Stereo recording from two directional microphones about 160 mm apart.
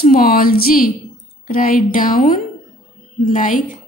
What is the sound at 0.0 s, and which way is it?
Speech, 60° left (ahead or behind).